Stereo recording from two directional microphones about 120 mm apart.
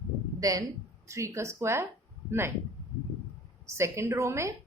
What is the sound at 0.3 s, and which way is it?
Speech, 30° right (ahead or behind).